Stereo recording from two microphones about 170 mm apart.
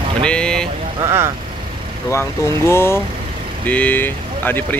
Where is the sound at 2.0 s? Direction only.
15° left (ahead or behind).